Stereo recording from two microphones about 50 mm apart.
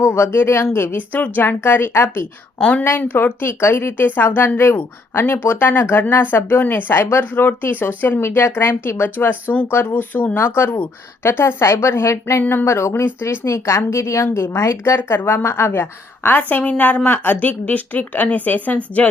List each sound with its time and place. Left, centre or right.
0.0 s a woman's voice: left
0.9 s speech: left
2.6 s a woman's voice: left
2.9 s speech: left
4.8 s speech: left
5.3 s speech: left
8.5 s speech: left
10.3 s speech: left
11.2 s a woman's voice: left
12.4 s speech: left
12.6 s a woman's voice: left
13.4 s a woman's voice: left
14.5 s speech: left
16.4 s speech: left